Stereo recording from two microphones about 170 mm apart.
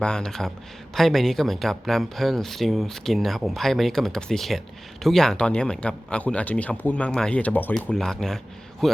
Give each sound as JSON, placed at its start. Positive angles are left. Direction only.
{"t": 0.0, "sound": "speech", "side_deg": 5}